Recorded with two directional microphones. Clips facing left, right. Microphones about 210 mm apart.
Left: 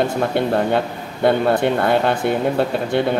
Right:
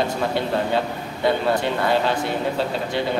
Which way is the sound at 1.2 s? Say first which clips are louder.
Left 5 dB; 55° left (ahead or behind).